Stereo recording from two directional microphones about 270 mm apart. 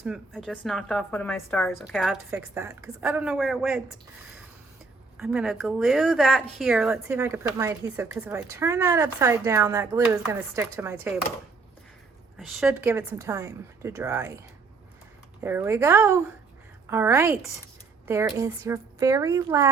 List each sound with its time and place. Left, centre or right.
0.0 s a woman's voice: centre
5.1 s speech: centre
12.4 s speech: centre
15.4 s speech: centre
18.3 s speech: centre